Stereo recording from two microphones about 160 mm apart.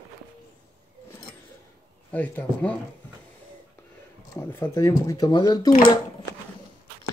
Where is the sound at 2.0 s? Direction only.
10° left (ahead or behind).